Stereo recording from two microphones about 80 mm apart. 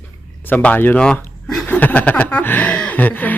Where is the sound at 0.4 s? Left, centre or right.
Centre.